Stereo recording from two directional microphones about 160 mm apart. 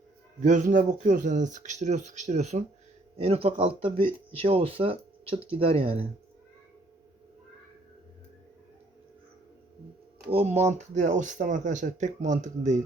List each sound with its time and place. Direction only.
0.4 s speech: 55° right (ahead or behind); by 6.1 s 35° right (ahead or behind)
10.2 s speech: 40° right (ahead or behind)